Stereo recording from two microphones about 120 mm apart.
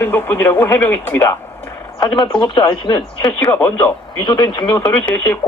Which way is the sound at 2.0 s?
45° left (ahead or behind).